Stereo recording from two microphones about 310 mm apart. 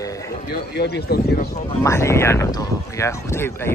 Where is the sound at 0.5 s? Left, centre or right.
Left.